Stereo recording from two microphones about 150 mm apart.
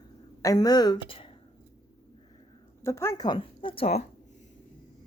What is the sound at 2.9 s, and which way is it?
Speech, 20° left (ahead or behind).